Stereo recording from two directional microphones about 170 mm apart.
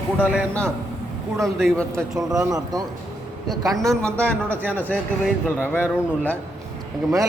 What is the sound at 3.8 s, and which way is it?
Speech, 5° left (ahead or behind).